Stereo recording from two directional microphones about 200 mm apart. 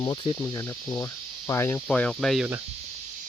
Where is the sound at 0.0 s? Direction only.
20° left (ahead or behind); by 2.5 s centre (ahead or behind).